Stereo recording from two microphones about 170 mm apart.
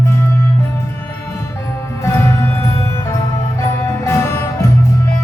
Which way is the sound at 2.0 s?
15° left (ahead or behind).